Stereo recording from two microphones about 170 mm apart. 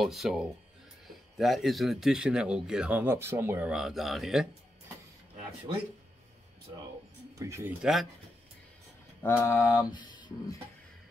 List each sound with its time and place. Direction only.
0.0 s speech: centre (ahead or behind)
7.3 s speech: 15° right (ahead or behind)
7.8 s speech: centre (ahead or behind)
9.2 s mantra: 15° left (ahead or behind)